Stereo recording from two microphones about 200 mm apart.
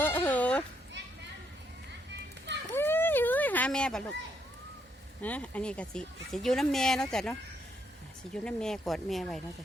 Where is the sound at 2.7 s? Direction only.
10° left (ahead or behind).